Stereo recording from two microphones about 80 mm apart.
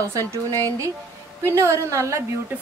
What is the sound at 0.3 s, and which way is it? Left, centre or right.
A woman's voice, right.